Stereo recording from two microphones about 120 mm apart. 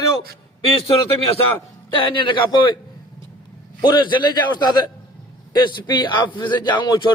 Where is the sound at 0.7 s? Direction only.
50° left (ahead or behind).